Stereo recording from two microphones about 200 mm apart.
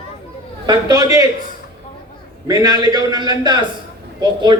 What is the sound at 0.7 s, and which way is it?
Speech, 20° right (ahead or behind).